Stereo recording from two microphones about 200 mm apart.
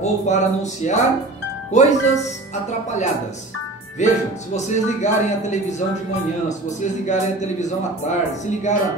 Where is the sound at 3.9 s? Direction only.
35° left (ahead or behind).